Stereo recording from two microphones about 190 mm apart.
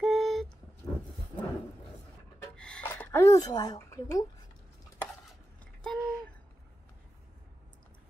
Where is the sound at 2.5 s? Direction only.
5° left (ahead or behind).